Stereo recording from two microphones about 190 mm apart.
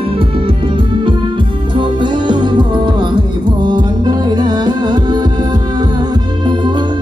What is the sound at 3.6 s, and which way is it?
Music, 20° right (ahead or behind).